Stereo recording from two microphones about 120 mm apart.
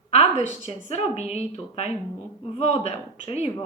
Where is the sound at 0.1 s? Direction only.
65° left (ahead or behind).